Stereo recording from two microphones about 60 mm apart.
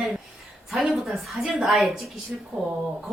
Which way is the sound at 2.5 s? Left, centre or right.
Right.